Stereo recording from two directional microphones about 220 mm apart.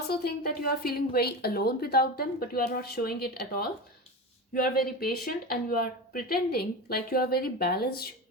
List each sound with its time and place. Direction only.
0.1 s a woman's voice: 45° left (ahead or behind)